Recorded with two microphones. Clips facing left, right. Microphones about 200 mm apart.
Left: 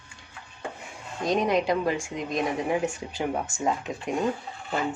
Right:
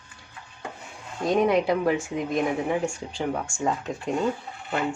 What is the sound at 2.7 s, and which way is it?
Speech, 5° left (ahead or behind).